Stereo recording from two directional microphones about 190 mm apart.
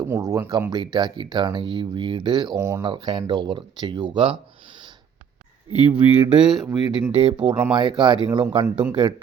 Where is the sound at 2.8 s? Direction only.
25° right (ahead or behind).